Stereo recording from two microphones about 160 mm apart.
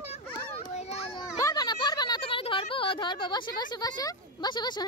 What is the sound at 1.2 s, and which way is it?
Speech, 20° left (ahead or behind).